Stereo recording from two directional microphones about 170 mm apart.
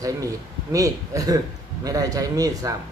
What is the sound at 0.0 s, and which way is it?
A man's voice, 20° right (ahead or behind).